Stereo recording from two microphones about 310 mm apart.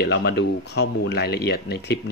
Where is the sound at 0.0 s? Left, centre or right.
Left.